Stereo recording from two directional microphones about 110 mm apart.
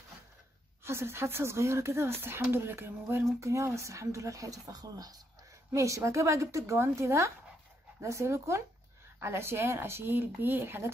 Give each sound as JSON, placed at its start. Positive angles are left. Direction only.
{"t": 0.8, "sound": "speech", "side_deg": -25}